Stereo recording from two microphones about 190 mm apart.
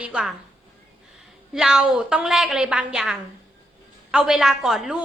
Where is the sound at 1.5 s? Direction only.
5° right (ahead or behind).